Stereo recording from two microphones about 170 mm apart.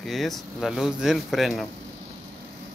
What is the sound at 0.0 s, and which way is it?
Speech, centre (ahead or behind).